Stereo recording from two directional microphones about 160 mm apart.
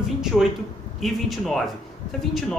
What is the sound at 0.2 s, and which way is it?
A man's voice, 5° right (ahead or behind).